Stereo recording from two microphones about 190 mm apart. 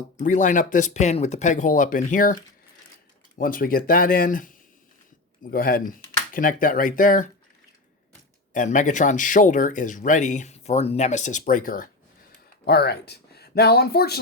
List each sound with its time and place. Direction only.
0.2 s speech: 40° left (ahead or behind)
8.5 s speech: 40° left (ahead or behind)
12.6 s speech: 60° left (ahead or behind)